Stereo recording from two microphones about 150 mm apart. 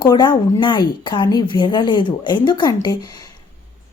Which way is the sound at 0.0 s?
30° left (ahead or behind).